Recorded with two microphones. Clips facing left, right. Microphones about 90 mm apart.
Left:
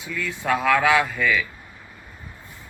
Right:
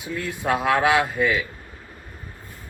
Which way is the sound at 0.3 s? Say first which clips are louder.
Left 1 dB; 20° right (ahead or behind).